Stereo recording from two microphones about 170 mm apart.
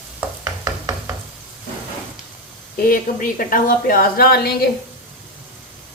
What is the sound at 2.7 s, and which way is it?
A woman's voice, 55° left (ahead or behind).